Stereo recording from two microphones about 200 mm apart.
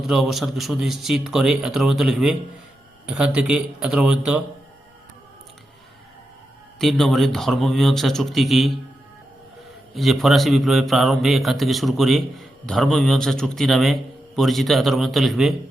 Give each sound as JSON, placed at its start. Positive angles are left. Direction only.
{"t": 0.0, "sound": "a man's voice", "side_deg": 0}
{"t": 6.7, "sound": "a man's voice", "side_deg": 0}
{"t": 9.9, "sound": "a man's voice", "side_deg": 0}